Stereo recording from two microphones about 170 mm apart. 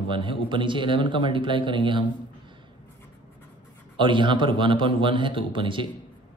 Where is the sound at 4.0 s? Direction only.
30° right (ahead or behind).